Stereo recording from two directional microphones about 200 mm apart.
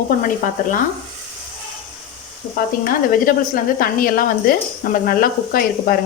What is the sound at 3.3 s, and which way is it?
Speech, 45° left (ahead or behind).